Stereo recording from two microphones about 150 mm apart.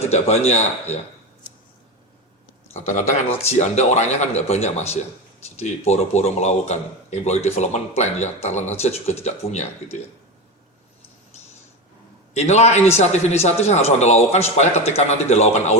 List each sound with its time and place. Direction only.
0.1 s a man's voice: 45° left (ahead or behind)
2.7 s a man's voice: 55° left (ahead or behind)
12.3 s a man's voice: 45° left (ahead or behind)